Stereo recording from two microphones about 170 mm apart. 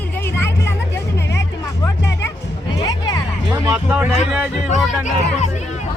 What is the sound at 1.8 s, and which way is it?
Music, 15° left (ahead or behind).